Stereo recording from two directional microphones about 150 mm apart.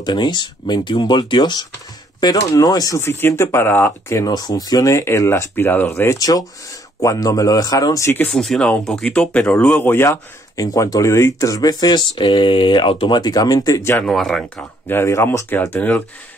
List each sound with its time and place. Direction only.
0.0 s speech: 30° left (ahead or behind)
14.0 s speech: centre (ahead or behind)
14.9 s speech: 20° left (ahead or behind)